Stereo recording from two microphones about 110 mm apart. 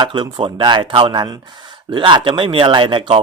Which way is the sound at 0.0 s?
45° right (ahead or behind).